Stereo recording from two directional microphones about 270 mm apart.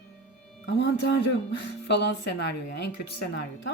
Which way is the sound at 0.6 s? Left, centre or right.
Left.